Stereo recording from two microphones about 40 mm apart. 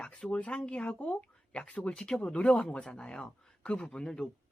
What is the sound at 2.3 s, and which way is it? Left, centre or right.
Speech, left.